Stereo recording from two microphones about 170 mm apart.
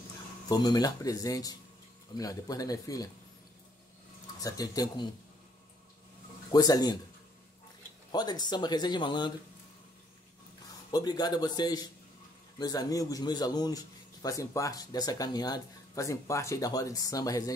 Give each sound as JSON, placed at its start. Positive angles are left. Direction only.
{"t": 0.5, "sound": "speech", "side_deg": 25}
{"t": 4.4, "sound": "speech", "side_deg": 20}
{"t": 6.5, "sound": "speech", "side_deg": 20}
{"t": 8.1, "sound": "speech", "side_deg": 25}
{"t": 10.9, "sound": "speech", "side_deg": 25}